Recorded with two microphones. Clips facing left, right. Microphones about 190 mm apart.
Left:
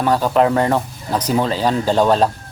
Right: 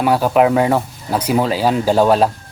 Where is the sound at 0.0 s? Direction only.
10° right (ahead or behind).